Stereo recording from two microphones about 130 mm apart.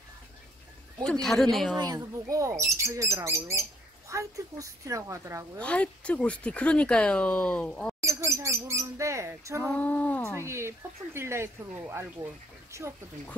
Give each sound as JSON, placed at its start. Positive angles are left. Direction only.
{"t": 1.2, "sound": "a woman's voice", "side_deg": 0}
{"t": 1.8, "sound": "speech", "side_deg": -30}
{"t": 5.6, "sound": "speech", "side_deg": 10}
{"t": 8.0, "sound": "bird", "side_deg": -25}
{"t": 9.8, "sound": "speech", "side_deg": 15}
{"t": 10.3, "sound": "speech", "side_deg": -20}